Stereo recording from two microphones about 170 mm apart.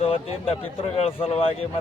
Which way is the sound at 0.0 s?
35° left (ahead or behind).